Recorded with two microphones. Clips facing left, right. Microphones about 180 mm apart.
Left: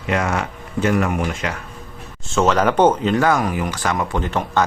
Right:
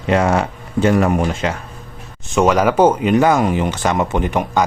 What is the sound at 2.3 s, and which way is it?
Speech, 15° right (ahead or behind).